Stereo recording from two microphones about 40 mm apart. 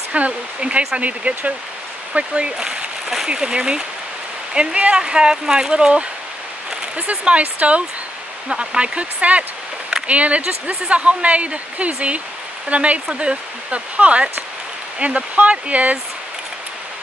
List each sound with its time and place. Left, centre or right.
0.1 s speech: right
4.6 s speech: right